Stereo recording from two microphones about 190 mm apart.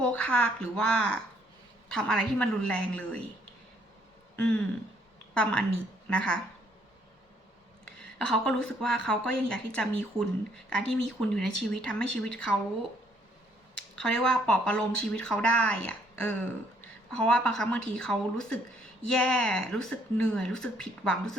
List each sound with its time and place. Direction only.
0.0 s speech: 5° left (ahead or behind)
4.4 s a sound: 5° left (ahead or behind)
5.3 s a woman's voice: 5° left (ahead or behind)
7.9 s speech: 5° left (ahead or behind)
13.7 s speech: 5° left (ahead or behind)